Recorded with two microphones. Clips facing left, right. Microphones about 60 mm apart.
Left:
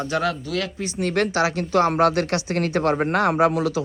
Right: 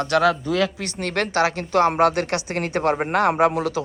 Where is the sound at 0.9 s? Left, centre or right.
Right.